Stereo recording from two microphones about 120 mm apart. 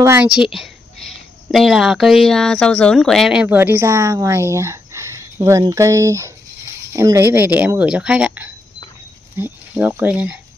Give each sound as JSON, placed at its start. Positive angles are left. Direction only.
{"t": 0.2, "sound": "speech", "side_deg": -5}
{"t": 3.4, "sound": "speech", "side_deg": -15}